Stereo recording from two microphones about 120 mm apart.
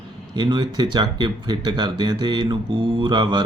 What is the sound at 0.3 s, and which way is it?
Speech, 40° right (ahead or behind).